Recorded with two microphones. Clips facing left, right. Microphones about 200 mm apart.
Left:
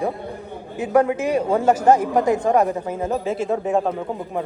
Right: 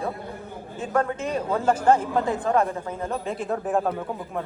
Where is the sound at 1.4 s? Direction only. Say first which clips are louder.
Left 6 dB; 30° left (ahead or behind).